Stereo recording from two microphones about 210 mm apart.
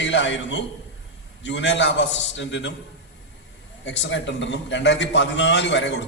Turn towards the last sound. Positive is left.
turn(degrees=55)  # may be behind; listen again after turning